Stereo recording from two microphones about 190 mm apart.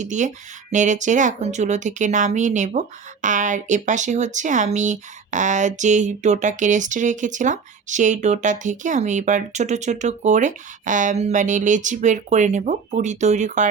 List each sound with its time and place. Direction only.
0.0 s speech: 40° right (ahead or behind)